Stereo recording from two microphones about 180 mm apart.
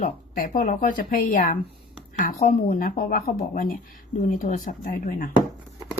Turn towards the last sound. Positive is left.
turn(degrees=60)  # may be behind; listen again after turning